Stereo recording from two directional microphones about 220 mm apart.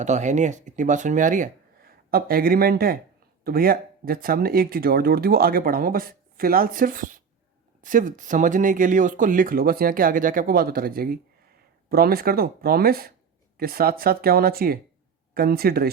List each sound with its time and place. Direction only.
0.0 s speech: 35° right (ahead or behind)